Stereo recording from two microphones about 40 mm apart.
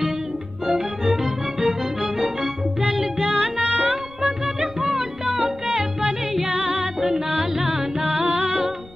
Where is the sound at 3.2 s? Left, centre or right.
Right.